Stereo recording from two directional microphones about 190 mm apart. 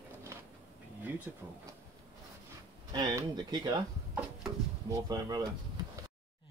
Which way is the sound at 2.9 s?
20° right (ahead or behind).